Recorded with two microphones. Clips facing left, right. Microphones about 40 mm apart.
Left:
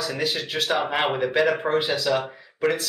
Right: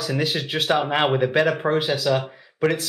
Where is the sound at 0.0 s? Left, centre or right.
Centre.